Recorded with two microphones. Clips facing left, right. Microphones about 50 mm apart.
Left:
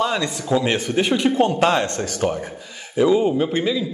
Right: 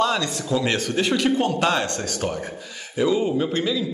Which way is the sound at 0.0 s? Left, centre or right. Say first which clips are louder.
Even; centre.